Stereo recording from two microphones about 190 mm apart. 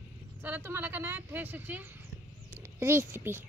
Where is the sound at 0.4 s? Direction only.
10° right (ahead or behind).